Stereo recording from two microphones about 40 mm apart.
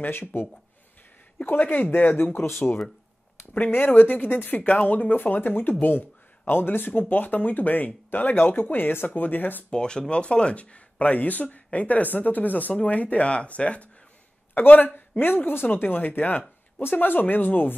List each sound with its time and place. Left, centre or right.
0.0 s speech: left
1.6 s speech: left
2.3 s speech: left
3.7 s speech: left
9.7 s speech: left
14.5 s speech: left